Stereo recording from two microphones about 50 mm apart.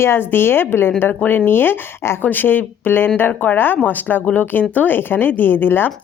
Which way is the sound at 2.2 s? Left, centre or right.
Left.